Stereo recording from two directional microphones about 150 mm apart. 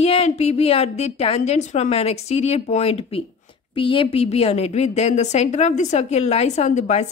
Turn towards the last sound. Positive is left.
turn(degrees=50)  # may be behind; listen again after turning